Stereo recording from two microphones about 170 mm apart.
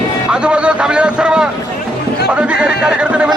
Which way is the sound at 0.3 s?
5° right (ahead or behind).